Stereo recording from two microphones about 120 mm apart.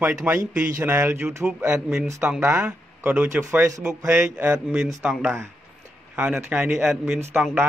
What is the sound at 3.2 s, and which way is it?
Speech, 20° right (ahead or behind).